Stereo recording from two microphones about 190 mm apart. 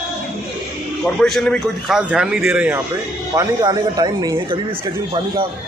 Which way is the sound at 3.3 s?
20° right (ahead or behind).